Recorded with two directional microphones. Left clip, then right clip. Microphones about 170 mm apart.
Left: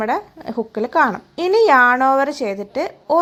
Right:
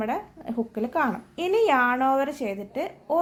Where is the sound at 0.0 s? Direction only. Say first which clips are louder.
Left 8 dB; 30° left (ahead or behind).